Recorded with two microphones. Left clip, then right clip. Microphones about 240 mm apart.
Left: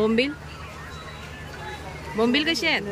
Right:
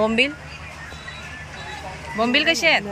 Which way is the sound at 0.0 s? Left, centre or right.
Centre.